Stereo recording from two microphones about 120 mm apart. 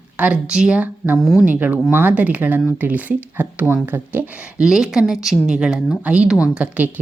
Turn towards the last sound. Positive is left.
turn(degrees=-10)  # may be behind; listen again after turning